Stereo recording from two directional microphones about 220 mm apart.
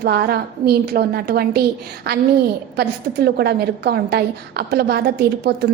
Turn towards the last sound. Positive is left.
turn(degrees=-45)  # may be behind; listen again after turning